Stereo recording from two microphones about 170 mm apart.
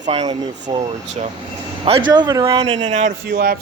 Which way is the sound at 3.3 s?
60° right (ahead or behind).